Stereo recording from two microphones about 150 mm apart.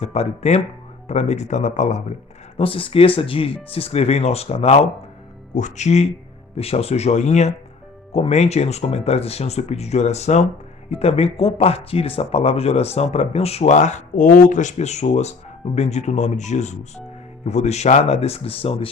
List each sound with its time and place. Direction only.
0.0 s speech: 45° left (ahead or behind)
2.6 s speech: 35° left (ahead or behind)